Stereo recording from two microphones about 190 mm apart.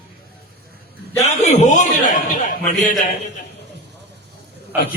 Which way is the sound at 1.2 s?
35° left (ahead or behind).